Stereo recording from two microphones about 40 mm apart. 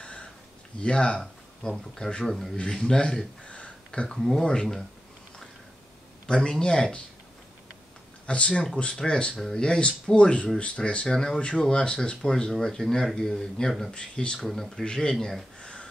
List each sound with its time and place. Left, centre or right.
0.7 s speech: left
1.2 s speech: centre
2.7 s speech: centre
3.4 s a sound: left
4.1 s speech: centre
6.2 s speech: left
8.3 s speech: left
11.1 s speech: centre
13.9 s speech: left
14.4 s speech: centre
15.6 s gasp: left